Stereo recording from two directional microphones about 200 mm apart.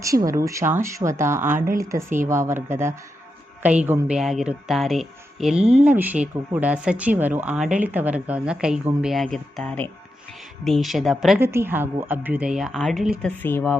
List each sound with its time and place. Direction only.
0.0 s speech: 15° right (ahead or behind)
1.5 s speech: 45° right (ahead or behind)
1.8 s speech: 15° right (ahead or behind)
11.3 s speech: 10° right (ahead or behind); by 13.7 s 10° left (ahead or behind)